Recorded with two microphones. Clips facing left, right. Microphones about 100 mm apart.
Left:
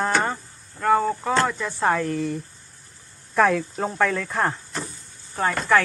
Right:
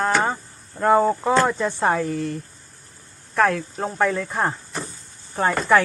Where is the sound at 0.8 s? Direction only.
25° right (ahead or behind).